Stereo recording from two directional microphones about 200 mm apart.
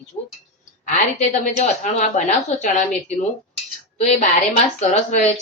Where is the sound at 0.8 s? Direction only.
35° left (ahead or behind).